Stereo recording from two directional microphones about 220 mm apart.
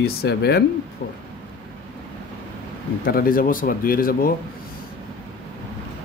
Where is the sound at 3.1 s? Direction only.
40° left (ahead or behind).